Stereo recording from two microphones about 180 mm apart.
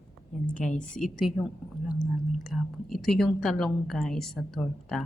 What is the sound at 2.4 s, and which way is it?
A woman's voice, centre (ahead or behind).